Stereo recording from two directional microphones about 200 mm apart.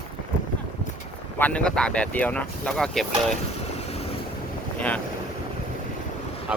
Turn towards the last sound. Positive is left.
turn(degrees=-5)  # may be behind; listen again after turning